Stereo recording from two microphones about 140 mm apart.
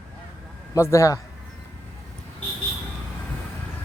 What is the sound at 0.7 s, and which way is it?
Speech, 20° left (ahead or behind).